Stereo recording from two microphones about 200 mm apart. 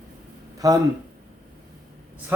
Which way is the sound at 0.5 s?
15° right (ahead or behind).